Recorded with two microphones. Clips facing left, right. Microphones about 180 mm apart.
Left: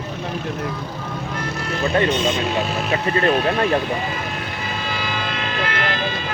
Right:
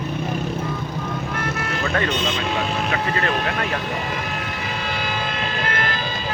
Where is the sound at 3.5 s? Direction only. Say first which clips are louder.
Left 6 dB; 30° left (ahead or behind).